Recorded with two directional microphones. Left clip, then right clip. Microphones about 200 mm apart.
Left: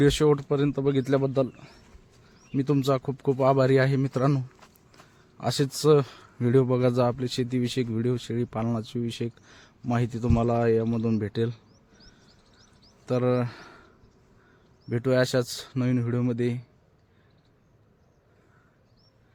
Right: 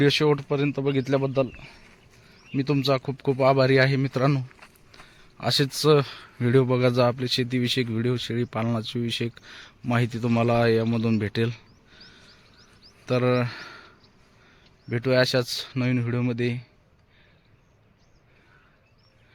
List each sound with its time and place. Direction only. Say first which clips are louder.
0.0 s speech: right 1 dB; 15° left (ahead or behind)
2.5 s speech: right 1 dB; 10° left (ahead or behind)
4.9 s a sound: right 5 dB; 5° left (ahead or behind)
5.4 s speech: right 3 dB; 5° left (ahead or behind)
13.1 s speech: right 2 dB; centre (ahead or behind)